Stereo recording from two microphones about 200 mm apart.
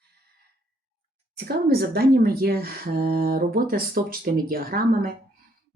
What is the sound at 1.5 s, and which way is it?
Speech, 50° right (ahead or behind).